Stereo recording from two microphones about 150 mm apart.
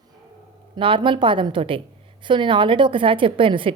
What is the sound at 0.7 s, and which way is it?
A woman's voice, 35° right (ahead or behind).